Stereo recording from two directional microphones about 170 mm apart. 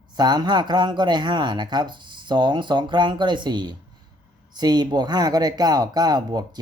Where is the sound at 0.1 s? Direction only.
25° right (ahead or behind).